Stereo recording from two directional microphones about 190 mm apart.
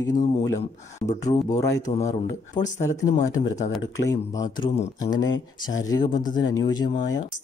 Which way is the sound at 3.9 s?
15° left (ahead or behind).